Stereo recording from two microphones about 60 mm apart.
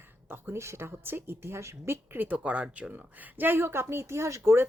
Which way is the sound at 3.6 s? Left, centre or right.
Right.